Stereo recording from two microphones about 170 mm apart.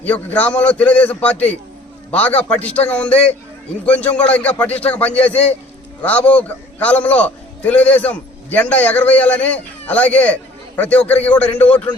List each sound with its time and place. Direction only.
0.0 s a man's voice: 10° left (ahead or behind)